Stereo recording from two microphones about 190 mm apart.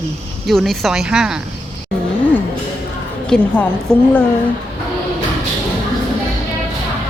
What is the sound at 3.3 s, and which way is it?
Speech, 5° left (ahead or behind).